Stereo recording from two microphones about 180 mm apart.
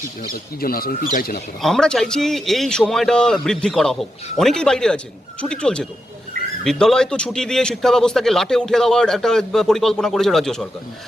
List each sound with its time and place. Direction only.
0.2 s speech: 55° left (ahead or behind)
1.6 s speech: 5° left (ahead or behind)